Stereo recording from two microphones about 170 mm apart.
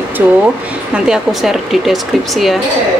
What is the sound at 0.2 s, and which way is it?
Speech, 10° right (ahead or behind).